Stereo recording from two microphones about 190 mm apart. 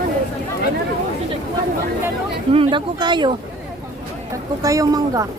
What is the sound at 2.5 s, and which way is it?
Speech, 30° right (ahead or behind).